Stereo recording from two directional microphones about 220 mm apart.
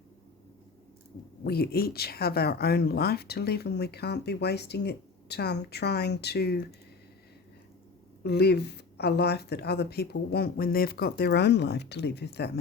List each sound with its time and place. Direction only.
1.5 s speech: 45° left (ahead or behind)
8.2 s speech: 50° left (ahead or behind)